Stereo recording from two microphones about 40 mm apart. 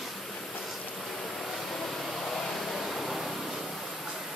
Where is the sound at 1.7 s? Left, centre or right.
Centre.